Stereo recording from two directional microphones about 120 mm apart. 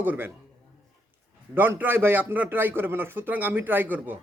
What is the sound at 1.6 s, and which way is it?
A man's voice, 15° right (ahead or behind).